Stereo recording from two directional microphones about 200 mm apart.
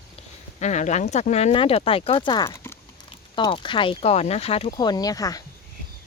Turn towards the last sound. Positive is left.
turn(degrees=20)  # may be behind; listen again after turning